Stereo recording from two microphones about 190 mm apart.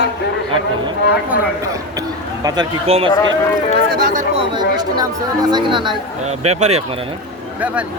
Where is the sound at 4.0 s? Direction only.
45° right (ahead or behind).